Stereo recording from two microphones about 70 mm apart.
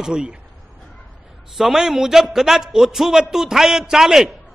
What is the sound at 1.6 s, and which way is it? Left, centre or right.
A man's voice, centre.